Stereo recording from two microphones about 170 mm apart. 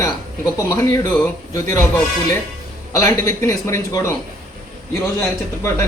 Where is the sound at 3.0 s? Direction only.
15° left (ahead or behind).